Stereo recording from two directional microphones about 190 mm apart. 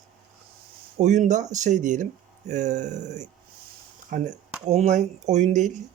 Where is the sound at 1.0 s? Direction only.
40° right (ahead or behind).